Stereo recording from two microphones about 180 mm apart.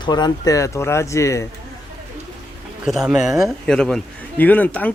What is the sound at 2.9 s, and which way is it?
Speech, 5° right (ahead or behind).